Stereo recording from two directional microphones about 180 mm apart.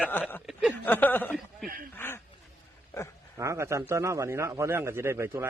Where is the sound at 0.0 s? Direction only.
10° left (ahead or behind).